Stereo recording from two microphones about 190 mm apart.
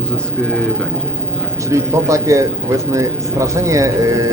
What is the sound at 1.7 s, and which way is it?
A man's voice, 15° right (ahead or behind).